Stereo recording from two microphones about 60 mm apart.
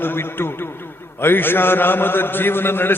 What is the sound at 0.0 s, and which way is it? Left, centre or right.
A man's voice, left.